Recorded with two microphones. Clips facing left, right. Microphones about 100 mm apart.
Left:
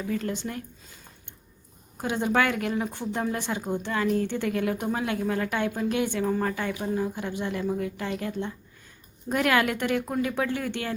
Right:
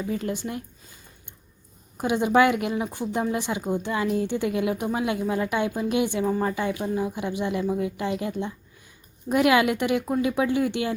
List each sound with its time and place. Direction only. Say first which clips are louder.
0.1 s speech: left 1 dB; 10° right (ahead or behind)
2.0 s speech: right 5 dB; 15° right (ahead or behind)